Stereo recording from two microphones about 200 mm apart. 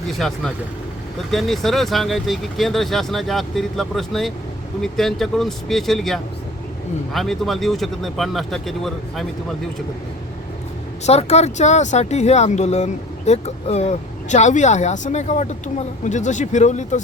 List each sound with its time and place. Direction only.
0.1 s speech: centre (ahead or behind)
11.0 s speech: 30° left (ahead or behind)